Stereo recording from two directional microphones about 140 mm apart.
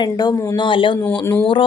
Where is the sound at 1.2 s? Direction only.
20° left (ahead or behind).